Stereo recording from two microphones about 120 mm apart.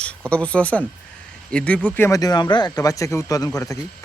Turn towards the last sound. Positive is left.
turn(degrees=30)  # may be behind; listen again after turning